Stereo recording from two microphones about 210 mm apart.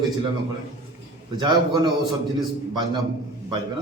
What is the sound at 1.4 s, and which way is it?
Speech, 20° right (ahead or behind).